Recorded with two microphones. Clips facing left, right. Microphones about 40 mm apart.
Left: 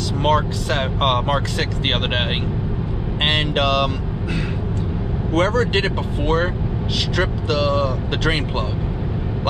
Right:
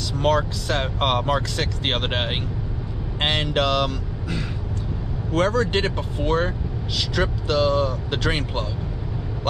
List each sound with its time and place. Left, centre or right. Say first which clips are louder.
0.2 s speech: left 2 dB; left
3.3 s speech: left 2 dB; left
5.3 s speech: left 2 dB; left